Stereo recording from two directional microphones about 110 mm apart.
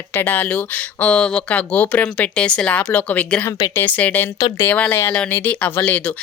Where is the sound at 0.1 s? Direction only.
20° left (ahead or behind).